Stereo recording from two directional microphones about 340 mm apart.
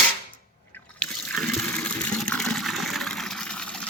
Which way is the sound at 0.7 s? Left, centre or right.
Centre.